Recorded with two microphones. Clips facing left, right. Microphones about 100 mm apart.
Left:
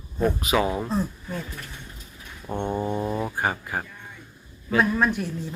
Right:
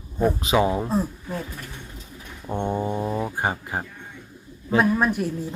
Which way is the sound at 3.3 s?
20° right (ahead or behind).